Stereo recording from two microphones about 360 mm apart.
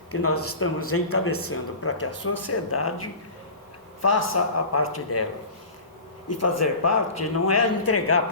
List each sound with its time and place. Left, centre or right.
0.1 s speech: left
4.0 s speech: left
6.2 s speech: left